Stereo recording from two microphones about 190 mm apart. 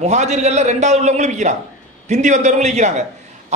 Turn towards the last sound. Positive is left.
turn(degrees=-35)  # may be behind; listen again after turning